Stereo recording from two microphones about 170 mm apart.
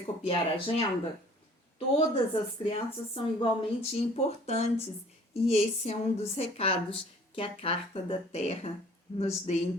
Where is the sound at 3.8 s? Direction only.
40° left (ahead or behind).